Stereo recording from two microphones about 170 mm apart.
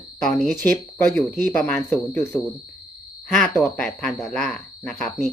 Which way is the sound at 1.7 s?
5° left (ahead or behind).